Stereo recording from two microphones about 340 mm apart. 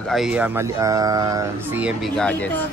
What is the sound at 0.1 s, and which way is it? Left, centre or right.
Speech, centre.